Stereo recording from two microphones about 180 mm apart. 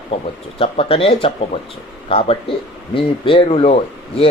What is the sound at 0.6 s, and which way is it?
Speech, 30° left (ahead or behind).